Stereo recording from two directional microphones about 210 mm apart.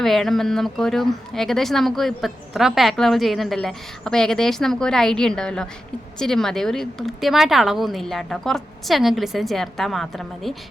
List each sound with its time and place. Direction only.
0.0 s speech: centre (ahead or behind)